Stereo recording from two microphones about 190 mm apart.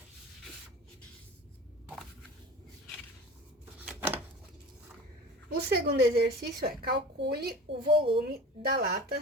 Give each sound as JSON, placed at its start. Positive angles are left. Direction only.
{"t": 5.5, "sound": "a woman's voice", "side_deg": -55}
{"t": 7.9, "sound": "a woman's voice", "side_deg": -30}
{"t": 8.3, "sound": "a woman's voice", "side_deg": -55}